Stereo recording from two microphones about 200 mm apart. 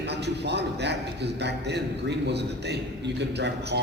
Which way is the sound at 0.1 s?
55° right (ahead or behind).